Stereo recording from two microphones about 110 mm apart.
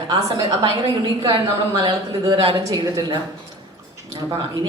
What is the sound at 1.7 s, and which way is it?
A woman's voice, 35° right (ahead or behind).